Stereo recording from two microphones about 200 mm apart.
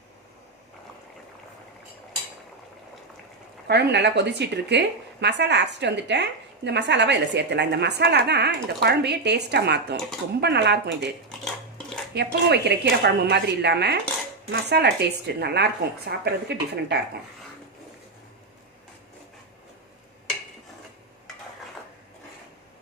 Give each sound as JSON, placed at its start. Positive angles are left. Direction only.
{"t": 3.7, "sound": "a woman's voice", "side_deg": -55}
{"t": 12.1, "sound": "a woman's voice", "side_deg": -55}